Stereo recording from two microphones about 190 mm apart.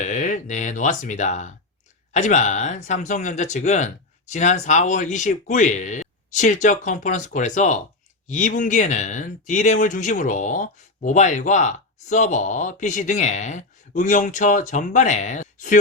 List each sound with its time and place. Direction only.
0.0 s speech: 40° left (ahead or behind)